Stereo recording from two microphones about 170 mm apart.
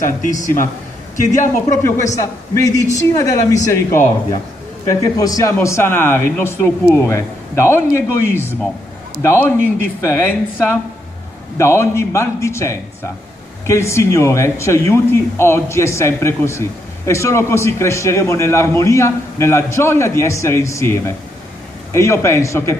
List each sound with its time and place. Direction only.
1.3 s a man's voice: 45° left (ahead or behind)
2.5 s a woman's voice: 20° left (ahead or behind)